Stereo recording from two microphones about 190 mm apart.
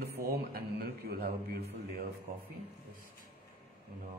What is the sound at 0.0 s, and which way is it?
A man's voice, 55° right (ahead or behind).